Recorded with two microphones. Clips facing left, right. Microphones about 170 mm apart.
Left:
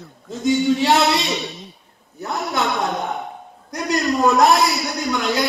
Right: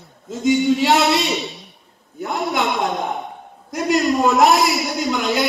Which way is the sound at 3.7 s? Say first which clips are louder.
Right 3 dB; 20° right (ahead or behind).